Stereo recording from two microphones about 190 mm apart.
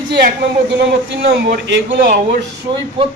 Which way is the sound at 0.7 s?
65° right (ahead or behind).